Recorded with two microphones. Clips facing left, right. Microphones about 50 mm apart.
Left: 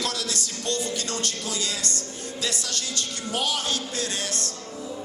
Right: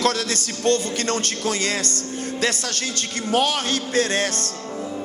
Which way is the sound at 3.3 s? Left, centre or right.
Right.